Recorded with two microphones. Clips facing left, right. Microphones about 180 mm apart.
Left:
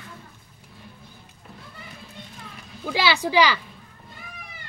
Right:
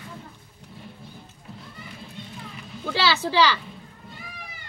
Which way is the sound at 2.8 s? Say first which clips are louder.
Left 1 dB; 15° left (ahead or behind).